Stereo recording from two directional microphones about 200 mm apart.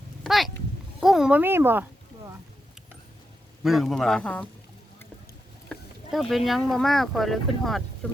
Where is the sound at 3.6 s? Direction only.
Centre (ahead or behind).